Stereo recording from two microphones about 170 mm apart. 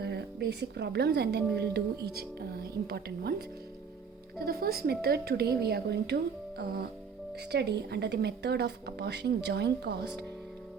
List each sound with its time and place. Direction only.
0.0 s a woman's voice: 75° right (ahead or behind)
7.5 s speech: 75° right (ahead or behind)